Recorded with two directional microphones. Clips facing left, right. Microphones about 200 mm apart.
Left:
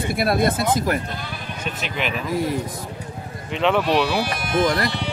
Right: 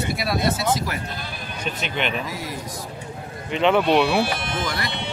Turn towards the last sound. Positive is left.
turn(degrees=50)  # may be behind; listen again after turning